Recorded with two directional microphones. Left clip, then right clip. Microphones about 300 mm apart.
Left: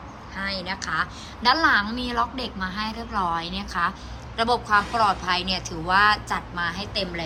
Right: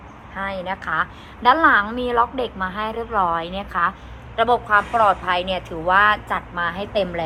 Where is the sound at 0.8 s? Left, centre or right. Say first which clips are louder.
Right 4 dB; centre.